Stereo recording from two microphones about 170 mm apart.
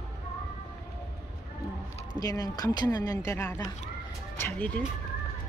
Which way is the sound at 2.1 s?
20° left (ahead or behind).